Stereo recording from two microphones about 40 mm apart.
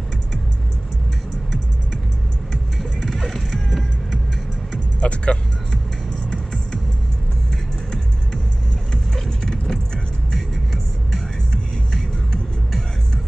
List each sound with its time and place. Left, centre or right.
2.8 s music: centre
5.0 s music: left
9.1 s a sound: centre
11.1 s music: centre